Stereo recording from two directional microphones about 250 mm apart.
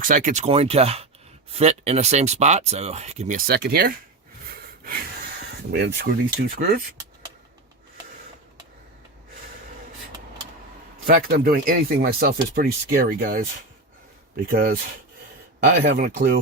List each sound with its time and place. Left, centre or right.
0.0 s speech: right
5.7 s speech: right
11.0 s speech: right
14.4 s speech: right